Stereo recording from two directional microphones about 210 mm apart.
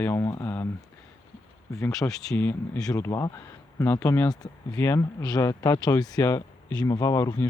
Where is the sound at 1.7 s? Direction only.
15° left (ahead or behind).